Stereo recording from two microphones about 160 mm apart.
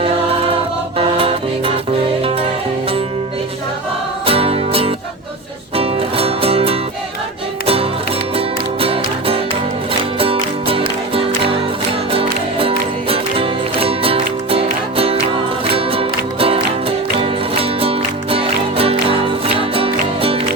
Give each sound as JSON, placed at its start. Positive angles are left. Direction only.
{"t": 0.9, "sound": "music", "side_deg": -35}
{"t": 4.3, "sound": "music", "side_deg": -35}
{"t": 8.4, "sound": "music", "side_deg": -35}